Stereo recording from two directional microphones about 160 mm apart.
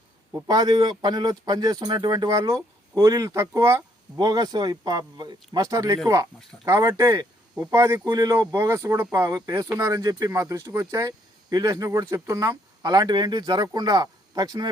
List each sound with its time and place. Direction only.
0.4 s speech: 25° right (ahead or behind)